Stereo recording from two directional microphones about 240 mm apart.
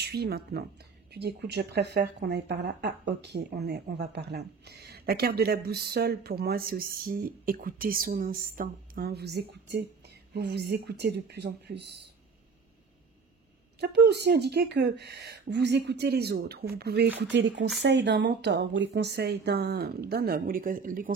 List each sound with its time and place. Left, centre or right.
0.0 s speech: right
13.7 s speech: right